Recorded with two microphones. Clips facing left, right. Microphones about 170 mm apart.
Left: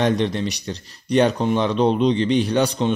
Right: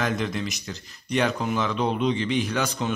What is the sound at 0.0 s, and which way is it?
Speech, 35° left (ahead or behind).